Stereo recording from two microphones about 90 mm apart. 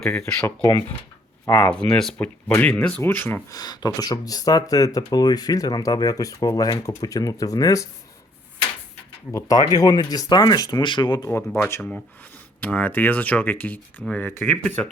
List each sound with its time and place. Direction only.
0.0 s speech: 10° left (ahead or behind)
0.4 s speech: 40° left (ahead or behind)
1.5 s speech: 20° left (ahead or behind)
2.1 s speech: 20° left (ahead or behind)
3.0 s speech: 20° left (ahead or behind)
3.5 s speech: 45° left (ahead or behind)
9.3 s speech: 45° left (ahead or behind)
11.3 s speech: 25° left (ahead or behind)
11.8 s speech: 10° left (ahead or behind)
14.4 s speech: 10° left (ahead or behind)